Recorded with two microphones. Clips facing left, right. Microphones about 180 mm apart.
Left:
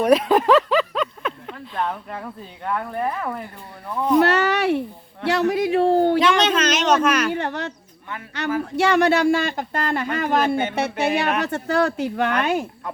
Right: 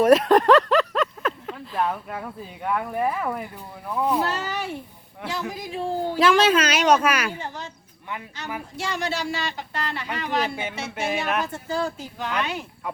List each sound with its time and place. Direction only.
0.0 s speech: centre (ahead or behind)
4.2 s speech: 70° left (ahead or behind)
6.1 s speech: 5° right (ahead or behind)
7.3 s speech: 70° left (ahead or behind); by 10.7 s 50° left (ahead or behind)
10.8 s music: 65° left (ahead or behind)
11.3 s speech: 70° left (ahead or behind); by 12.6 s 50° left (ahead or behind)